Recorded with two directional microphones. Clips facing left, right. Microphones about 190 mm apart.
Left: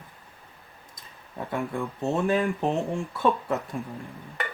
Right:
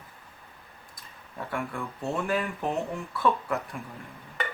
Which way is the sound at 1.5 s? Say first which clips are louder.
Left 4 dB; 20° left (ahead or behind).